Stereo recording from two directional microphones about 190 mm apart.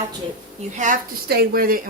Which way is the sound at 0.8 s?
50° right (ahead or behind).